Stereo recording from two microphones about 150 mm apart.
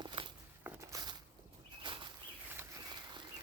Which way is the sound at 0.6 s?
10° right (ahead or behind).